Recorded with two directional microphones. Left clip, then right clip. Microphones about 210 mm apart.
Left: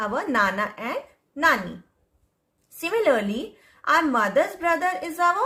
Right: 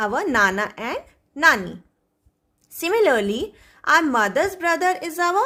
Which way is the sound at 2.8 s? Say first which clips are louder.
Right 3 dB; 50° right (ahead or behind).